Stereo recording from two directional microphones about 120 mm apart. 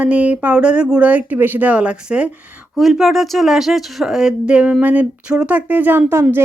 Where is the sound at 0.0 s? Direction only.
10° right (ahead or behind).